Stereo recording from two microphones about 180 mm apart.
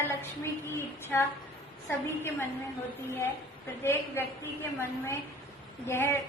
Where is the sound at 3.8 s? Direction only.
15° left (ahead or behind).